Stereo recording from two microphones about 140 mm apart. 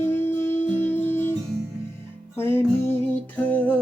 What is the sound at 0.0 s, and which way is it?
Music, 15° left (ahead or behind).